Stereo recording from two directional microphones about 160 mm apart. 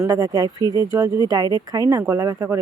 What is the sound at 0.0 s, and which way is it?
Speech, 20° right (ahead or behind).